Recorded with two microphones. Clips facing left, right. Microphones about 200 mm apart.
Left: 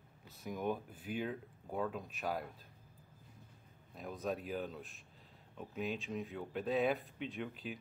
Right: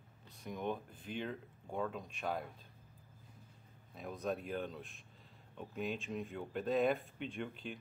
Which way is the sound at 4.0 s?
Centre (ahead or behind).